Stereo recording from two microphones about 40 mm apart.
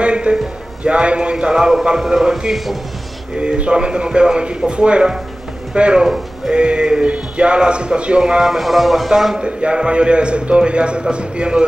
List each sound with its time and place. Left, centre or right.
0.0 s music: right
0.8 s a man's voice: right
1.5 s a man's voice: centre
2.5 s speech: centre
3.3 s a man's voice: right
6.0 s speech: centre
6.5 s a man's voice: right
8.2 s a man's voice: centre
8.5 s a man's voice: centre
9.4 s a man's voice: right